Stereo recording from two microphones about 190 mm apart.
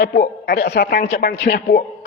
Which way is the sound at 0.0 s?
60° left (ahead or behind).